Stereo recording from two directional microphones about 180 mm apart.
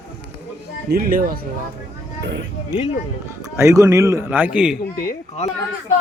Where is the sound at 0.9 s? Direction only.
55° right (ahead or behind).